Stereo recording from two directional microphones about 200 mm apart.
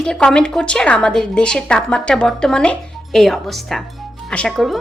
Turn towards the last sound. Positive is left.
turn(degrees=0)  # may be behind; listen again after turning